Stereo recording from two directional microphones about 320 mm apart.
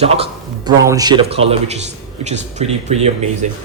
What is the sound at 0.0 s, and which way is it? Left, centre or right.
A man's voice, centre.